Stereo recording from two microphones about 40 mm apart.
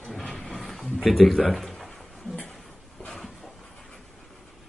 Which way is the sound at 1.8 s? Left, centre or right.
Centre.